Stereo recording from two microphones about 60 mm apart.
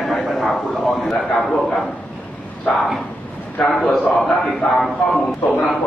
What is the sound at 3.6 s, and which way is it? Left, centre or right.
A man's voice, centre.